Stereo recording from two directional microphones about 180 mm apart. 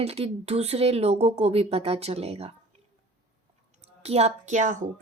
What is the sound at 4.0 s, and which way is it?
Speech, 35° right (ahead or behind).